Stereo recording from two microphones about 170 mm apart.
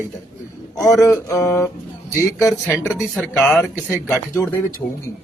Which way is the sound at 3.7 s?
10° right (ahead or behind).